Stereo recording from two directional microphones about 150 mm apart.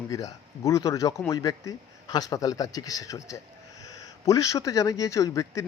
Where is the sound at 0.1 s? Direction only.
20° left (ahead or behind).